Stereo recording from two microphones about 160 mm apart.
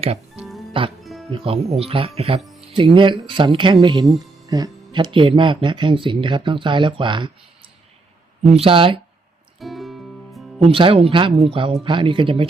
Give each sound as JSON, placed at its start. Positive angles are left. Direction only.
{"t": 0.0, "sound": "music", "side_deg": -40}
{"t": 1.0, "sound": "music", "side_deg": 0}
{"t": 1.3, "sound": "speech", "side_deg": -40}
{"t": 8.4, "sound": "speech", "side_deg": -35}
{"t": 9.6, "sound": "music", "side_deg": 0}
{"t": 10.6, "sound": "speech", "side_deg": -35}